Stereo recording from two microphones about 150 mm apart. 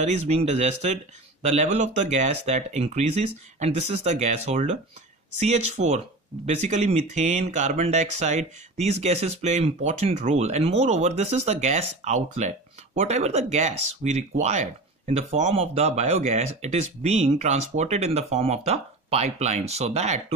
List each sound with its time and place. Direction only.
0.0 s speech: 50° right (ahead or behind)